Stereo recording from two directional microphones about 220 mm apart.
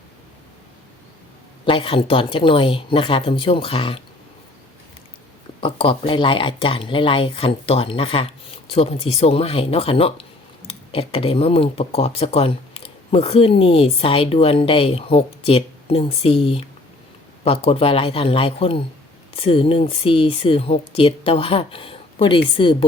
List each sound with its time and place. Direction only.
1.6 s speech: 25° left (ahead or behind)
5.5 s speech: 25° left (ahead or behind)